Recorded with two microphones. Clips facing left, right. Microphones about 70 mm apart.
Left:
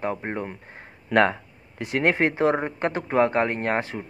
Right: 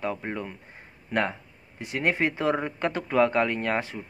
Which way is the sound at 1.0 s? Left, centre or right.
Left.